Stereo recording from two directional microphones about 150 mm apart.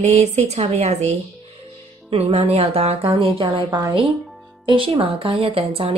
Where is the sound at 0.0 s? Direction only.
50° right (ahead or behind).